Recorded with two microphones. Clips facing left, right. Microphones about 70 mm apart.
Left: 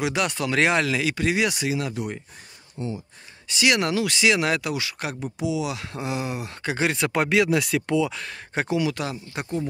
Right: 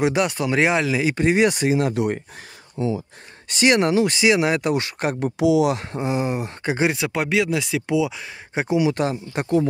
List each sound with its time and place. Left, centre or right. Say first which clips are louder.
0.0 s speech: right 5 dB; right
1.0 s speech: right 5 dB; right
3.6 s speech: right 5 dB; right
4.6 s speech: right 7 dB; right
5.2 s speech: right 10 dB; right
5.7 s speech: right 6 dB; right
7.0 s speech: even; centre
7.8 s speech: right 2 dB; centre
8.9 s speech: right 7 dB; right